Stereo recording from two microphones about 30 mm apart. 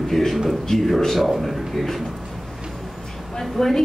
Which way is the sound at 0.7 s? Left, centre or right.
Centre.